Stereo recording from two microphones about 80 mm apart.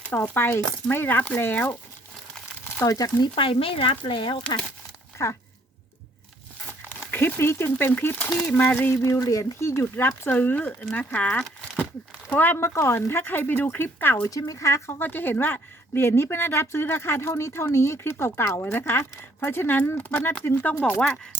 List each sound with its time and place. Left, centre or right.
0.1 s a woman's voice: left
2.8 s speech: left
3.2 s speech: left
5.1 s speech: left
6.7 s a sound: left
8.1 s a woman's voice: centre
9.0 s a woman's voice: left
14.2 s a woman's voice: left